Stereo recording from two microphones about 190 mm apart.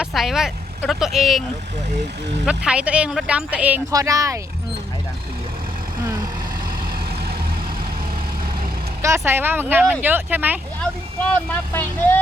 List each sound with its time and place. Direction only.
0.0 s speech: centre (ahead or behind); by 4.4 s 15° right (ahead or behind)
9.0 s speech: 15° right (ahead or behind)
10.8 s speech: 5° left (ahead or behind)